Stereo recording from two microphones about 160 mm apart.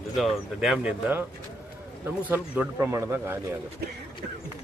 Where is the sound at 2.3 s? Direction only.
10° right (ahead or behind).